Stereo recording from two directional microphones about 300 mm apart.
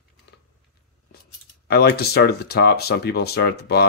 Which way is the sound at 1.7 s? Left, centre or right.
Left.